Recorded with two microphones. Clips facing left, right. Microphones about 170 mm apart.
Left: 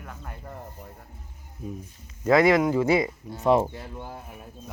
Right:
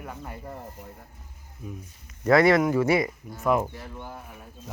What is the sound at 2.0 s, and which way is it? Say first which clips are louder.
Speech: even; 20° left (ahead or behind).